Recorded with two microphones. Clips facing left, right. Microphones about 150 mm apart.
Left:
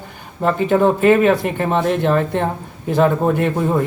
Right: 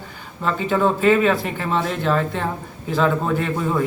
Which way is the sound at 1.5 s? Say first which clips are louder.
Left 5 dB; 55° left (ahead or behind).